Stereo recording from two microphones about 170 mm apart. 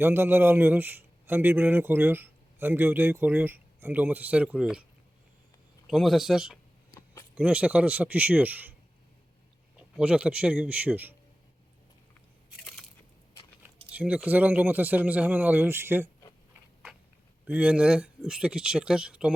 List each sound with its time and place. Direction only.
0.0 s a man's voice: 15° right (ahead or behind)
5.9 s speech: centre (ahead or behind)
6.9 s a sound: 20° left (ahead or behind)
7.3 s a man's voice: 10° right (ahead or behind)
9.7 s a man's voice: 5° right (ahead or behind)
12.5 s crunch: centre (ahead or behind)
13.6 s a man's voice: 10° right (ahead or behind)
17.4 s speech: 10° right (ahead or behind)